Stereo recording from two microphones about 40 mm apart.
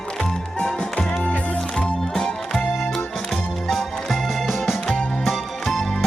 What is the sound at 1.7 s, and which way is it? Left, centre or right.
Music, centre.